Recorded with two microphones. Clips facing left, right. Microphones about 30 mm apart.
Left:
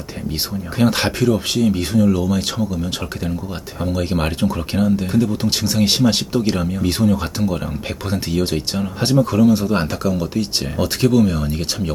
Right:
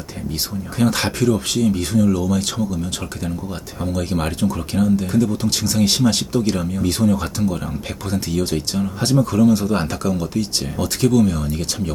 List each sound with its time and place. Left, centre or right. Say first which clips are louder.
0.8 s speech: left 2 dB; centre